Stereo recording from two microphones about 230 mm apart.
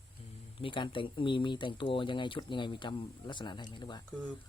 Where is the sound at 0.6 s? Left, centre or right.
Left.